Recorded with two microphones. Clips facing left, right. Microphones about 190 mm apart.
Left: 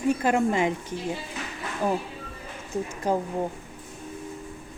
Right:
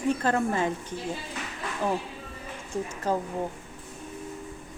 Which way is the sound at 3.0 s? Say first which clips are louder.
Left 2 dB; 15° left (ahead or behind).